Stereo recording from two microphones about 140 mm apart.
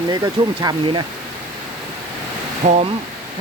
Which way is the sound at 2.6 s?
55° right (ahead or behind).